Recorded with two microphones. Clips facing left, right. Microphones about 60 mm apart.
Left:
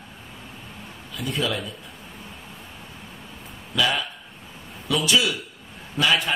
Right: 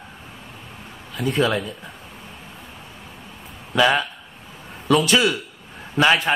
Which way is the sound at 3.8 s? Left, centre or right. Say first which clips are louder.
Right 6 dB; right.